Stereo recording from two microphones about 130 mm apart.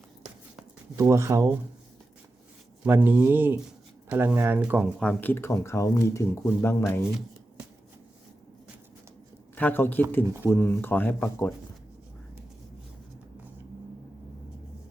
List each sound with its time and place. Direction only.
0.9 s speech: 20° right (ahead or behind)
2.8 s speech: 15° right (ahead or behind)
4.9 s speech: 10° left (ahead or behind)
9.6 s speech: 15° left (ahead or behind)